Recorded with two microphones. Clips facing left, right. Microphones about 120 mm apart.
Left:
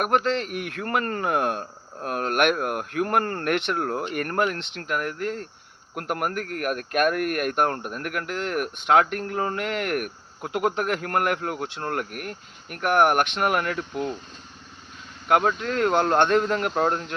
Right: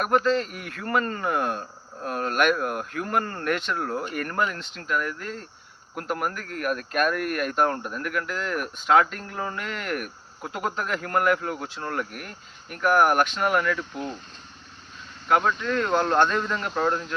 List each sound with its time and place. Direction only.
0.0 s speech: 65° left (ahead or behind)
15.3 s speech: 60° left (ahead or behind)
16.7 s speech: 40° left (ahead or behind)